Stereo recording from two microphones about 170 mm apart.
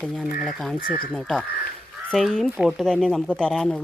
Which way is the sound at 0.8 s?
55° left (ahead or behind).